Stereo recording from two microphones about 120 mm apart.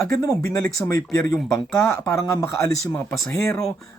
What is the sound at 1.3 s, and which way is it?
Speech, 5° left (ahead or behind).